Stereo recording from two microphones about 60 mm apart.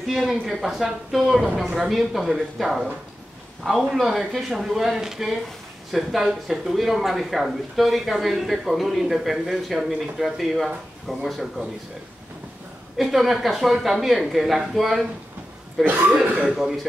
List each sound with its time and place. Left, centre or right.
0.1 s speech: centre
12.9 s speech: centre
15.8 s speech: right
16.5 s speech: centre